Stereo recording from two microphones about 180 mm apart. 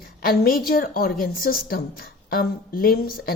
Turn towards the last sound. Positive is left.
turn(degrees=55)  # may be behind; listen again after turning